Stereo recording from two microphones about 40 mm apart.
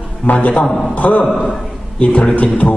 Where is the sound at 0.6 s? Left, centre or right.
Centre.